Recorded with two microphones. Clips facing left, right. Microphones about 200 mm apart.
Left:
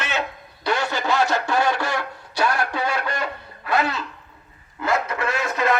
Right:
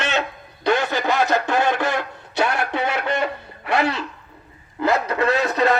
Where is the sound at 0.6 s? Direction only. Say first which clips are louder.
Right 3 dB; 20° right (ahead or behind).